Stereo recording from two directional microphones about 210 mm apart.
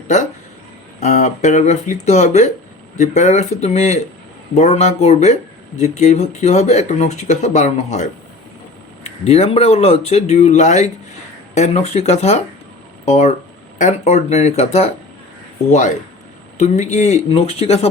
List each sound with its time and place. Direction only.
0.9 s speech: 35° left (ahead or behind)
16.6 s speech: 35° left (ahead or behind)